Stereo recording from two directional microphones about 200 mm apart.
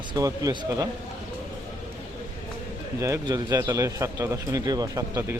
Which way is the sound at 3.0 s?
15° right (ahead or behind).